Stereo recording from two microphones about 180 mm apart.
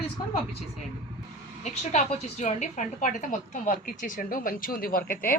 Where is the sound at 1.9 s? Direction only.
40° left (ahead or behind).